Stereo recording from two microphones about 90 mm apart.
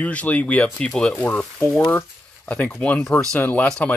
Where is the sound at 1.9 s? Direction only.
15° left (ahead or behind).